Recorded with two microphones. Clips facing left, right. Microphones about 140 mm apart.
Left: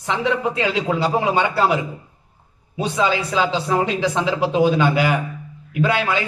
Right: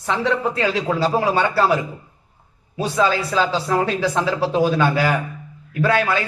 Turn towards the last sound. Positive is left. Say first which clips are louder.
# right 1 dB
turn(degrees=20)  # may be behind; listen again after turning